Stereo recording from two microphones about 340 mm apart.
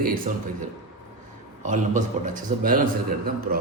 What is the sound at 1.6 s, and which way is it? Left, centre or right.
A man's voice, right.